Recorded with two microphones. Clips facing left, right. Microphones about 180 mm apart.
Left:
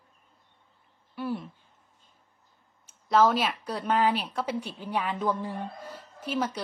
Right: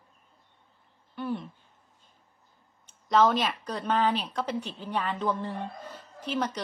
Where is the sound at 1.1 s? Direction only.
5° left (ahead or behind).